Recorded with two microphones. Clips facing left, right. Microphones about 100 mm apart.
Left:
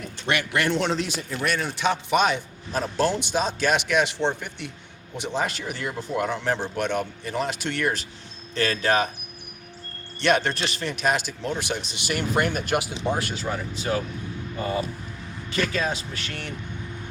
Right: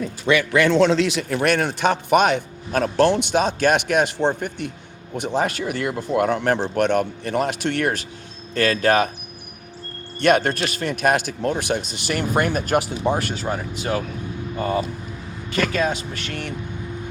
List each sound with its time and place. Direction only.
0.9 s a man's voice: 90° right; by 9.0 s 50° right (ahead or behind)
10.2 s a man's voice: 50° right (ahead or behind)
16.0 s speech: 40° left (ahead or behind)